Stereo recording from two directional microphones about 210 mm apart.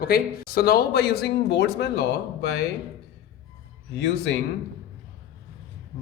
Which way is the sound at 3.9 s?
55° left (ahead or behind).